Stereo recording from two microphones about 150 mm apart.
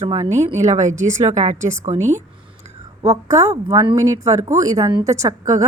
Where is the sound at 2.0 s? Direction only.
15° right (ahead or behind).